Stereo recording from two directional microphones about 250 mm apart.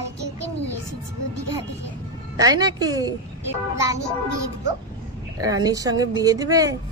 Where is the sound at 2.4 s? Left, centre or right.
Centre.